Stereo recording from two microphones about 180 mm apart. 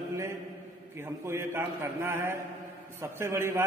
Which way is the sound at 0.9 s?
15° right (ahead or behind).